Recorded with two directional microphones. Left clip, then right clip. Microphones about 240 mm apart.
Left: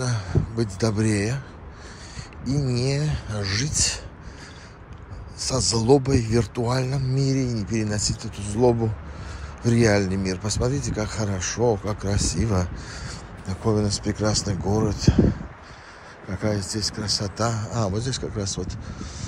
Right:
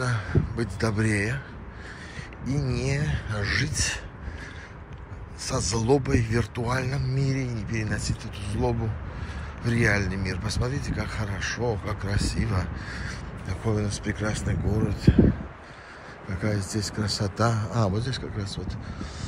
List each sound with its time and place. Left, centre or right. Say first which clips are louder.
0.0 s speech: even; left
2.7 s speech: left 3 dB; left
5.4 s speech: left 4 dB; centre
14.5 s speech: left 5 dB; centre
16.3 s speech: left 4 dB; centre